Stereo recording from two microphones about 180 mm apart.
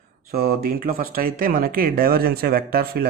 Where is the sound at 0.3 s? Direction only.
55° right (ahead or behind).